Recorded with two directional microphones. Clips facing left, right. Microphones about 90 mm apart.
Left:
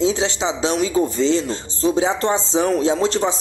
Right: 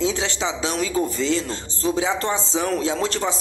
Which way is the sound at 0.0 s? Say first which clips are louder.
Left 4 dB; 25° left (ahead or behind).